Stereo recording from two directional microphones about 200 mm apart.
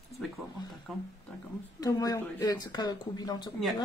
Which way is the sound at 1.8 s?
20° left (ahead or behind).